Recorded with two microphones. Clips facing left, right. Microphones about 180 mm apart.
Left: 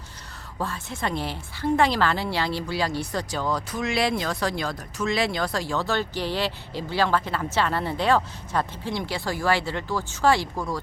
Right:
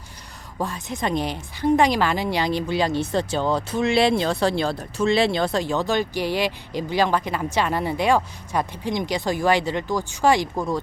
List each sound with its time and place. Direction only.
0.6 s a woman's voice: 15° right (ahead or behind)